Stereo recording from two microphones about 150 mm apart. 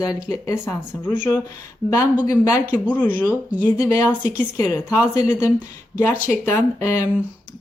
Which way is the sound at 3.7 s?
20° left (ahead or behind).